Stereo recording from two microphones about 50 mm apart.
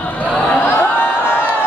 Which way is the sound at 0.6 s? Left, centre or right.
Left.